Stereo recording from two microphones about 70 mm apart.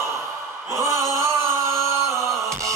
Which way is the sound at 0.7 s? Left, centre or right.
Right.